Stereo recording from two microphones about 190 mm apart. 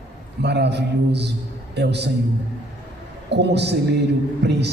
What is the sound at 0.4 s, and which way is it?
A man's voice, 60° right (ahead or behind).